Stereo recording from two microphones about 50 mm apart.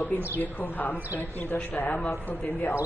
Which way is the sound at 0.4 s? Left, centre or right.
Left.